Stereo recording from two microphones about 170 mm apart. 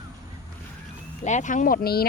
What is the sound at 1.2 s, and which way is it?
Speech, 45° left (ahead or behind).